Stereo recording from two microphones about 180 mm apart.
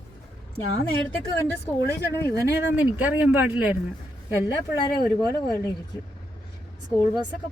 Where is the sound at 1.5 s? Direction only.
65° left (ahead or behind).